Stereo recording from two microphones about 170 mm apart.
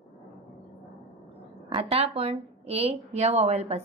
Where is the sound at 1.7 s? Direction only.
35° right (ahead or behind).